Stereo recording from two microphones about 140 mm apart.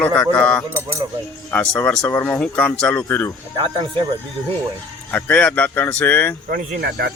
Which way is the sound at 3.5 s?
35° right (ahead or behind).